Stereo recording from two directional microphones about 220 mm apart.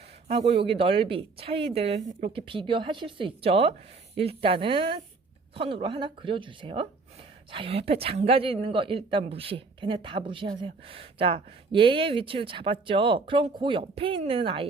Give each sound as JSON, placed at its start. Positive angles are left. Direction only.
{"t": 0.3, "sound": "a woman's voice", "side_deg": -25}